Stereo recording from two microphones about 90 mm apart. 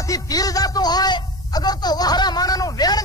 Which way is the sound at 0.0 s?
40° left (ahead or behind).